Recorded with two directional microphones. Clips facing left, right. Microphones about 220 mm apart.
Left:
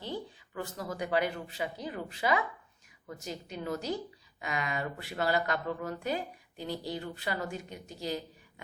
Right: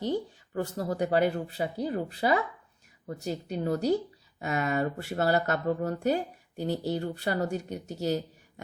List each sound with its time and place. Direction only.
0.0 s speech: 45° right (ahead or behind)